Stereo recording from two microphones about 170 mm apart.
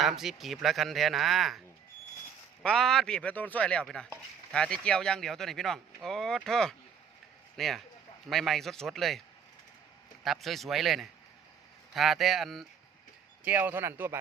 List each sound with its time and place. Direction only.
0.0 s speech: centre (ahead or behind)
2.6 s speech: centre (ahead or behind)
10.2 s speech: centre (ahead or behind)
13.4 s a man's voice: 10° right (ahead or behind)